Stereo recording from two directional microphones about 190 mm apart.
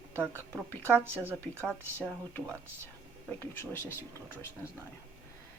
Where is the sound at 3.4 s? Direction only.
10° left (ahead or behind).